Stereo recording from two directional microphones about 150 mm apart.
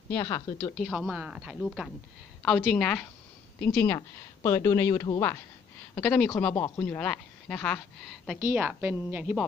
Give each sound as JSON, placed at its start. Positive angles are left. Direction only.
{"t": 0.1, "sound": "speech", "side_deg": 20}
{"t": 0.7, "sound": "a woman's voice", "side_deg": 0}
{"t": 5.9, "sound": "a woman's voice", "side_deg": 5}
{"t": 8.4, "sound": "a woman's voice", "side_deg": -10}